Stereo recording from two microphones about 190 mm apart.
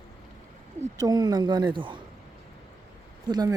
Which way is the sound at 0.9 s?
20° right (ahead or behind).